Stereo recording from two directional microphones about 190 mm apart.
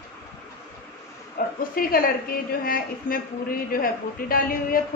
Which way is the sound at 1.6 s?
50° left (ahead or behind).